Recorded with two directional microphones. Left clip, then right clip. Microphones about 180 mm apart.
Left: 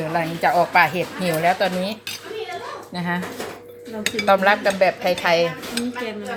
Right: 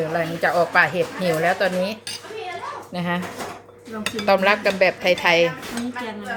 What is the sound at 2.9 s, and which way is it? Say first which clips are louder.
Cutlery: even; 10° right (ahead or behind).